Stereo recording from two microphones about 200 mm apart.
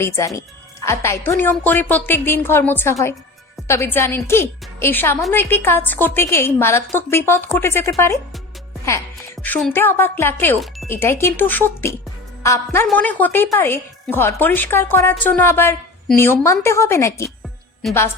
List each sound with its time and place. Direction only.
0.0 s a woman's voice: 15° left (ahead or behind)
9.1 s a woman's voice: 5° left (ahead or behind)
17.8 s a woman's voice: centre (ahead or behind)